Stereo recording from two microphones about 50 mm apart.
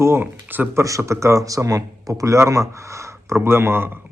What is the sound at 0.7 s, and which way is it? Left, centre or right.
Speech, right.